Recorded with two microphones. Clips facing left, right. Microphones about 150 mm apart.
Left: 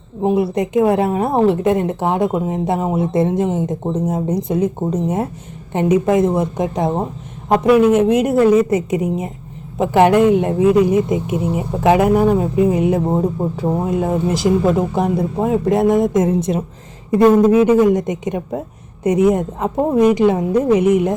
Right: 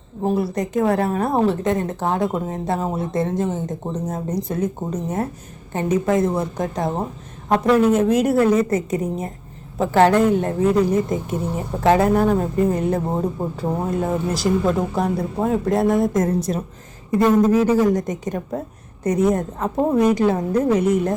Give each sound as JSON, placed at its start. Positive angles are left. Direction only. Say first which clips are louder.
{"t": 0.2, "sound": "a woman's voice", "louder": "left 5 dB", "side_deg": 20}
{"t": 7.5, "sound": "a woman's voice", "louder": "left 4 dB", "side_deg": 10}
{"t": 16.3, "sound": "a woman's voice", "louder": "left 4 dB", "side_deg": 25}